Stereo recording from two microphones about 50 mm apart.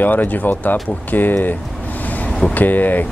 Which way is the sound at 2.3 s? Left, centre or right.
Centre.